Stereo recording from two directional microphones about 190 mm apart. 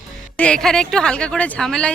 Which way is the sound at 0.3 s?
5° left (ahead or behind).